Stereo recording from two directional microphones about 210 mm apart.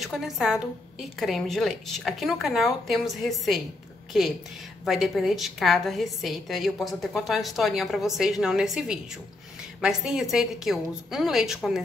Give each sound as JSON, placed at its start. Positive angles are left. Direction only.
{"t": 0.0, "sound": "a woman's voice", "side_deg": 0}
{"t": 4.8, "sound": "a woman's voice", "side_deg": 0}